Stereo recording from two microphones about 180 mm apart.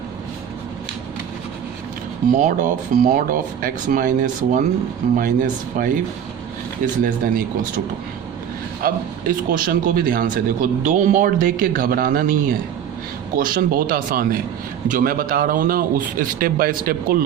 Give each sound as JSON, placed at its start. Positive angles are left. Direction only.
{"t": 2.3, "sound": "speech", "side_deg": -45}
{"t": 8.8, "sound": "speech", "side_deg": -55}